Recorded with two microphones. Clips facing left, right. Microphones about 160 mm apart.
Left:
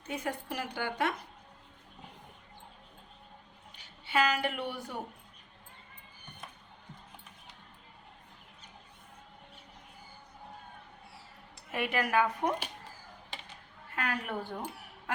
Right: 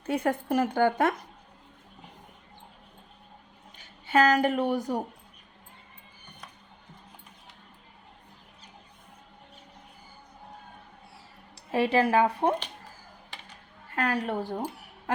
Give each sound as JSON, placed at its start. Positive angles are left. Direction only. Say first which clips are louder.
{"t": 0.0, "sound": "speech", "louder": "right 9 dB", "side_deg": -55}
{"t": 3.8, "sound": "a woman's voice", "louder": "right 7 dB", "side_deg": -45}
{"t": 11.5, "sound": "speech", "louder": "right 9 dB", "side_deg": -30}
{"t": 13.9, "sound": "speech", "louder": "right 7 dB", "side_deg": -35}